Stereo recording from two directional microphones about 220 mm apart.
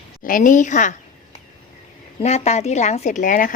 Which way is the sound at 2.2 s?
30° left (ahead or behind).